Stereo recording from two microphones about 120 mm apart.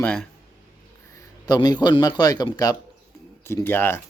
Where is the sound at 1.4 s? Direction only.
35° left (ahead or behind).